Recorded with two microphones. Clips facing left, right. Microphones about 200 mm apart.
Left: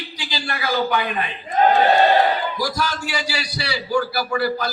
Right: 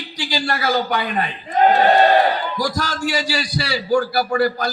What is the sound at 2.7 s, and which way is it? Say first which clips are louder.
A man's voice: right 3 dB; 45° right (ahead or behind).